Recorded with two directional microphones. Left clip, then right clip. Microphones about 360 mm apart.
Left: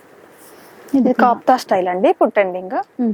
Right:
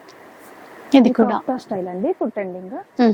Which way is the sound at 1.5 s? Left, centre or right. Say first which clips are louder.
Left 10 dB; centre.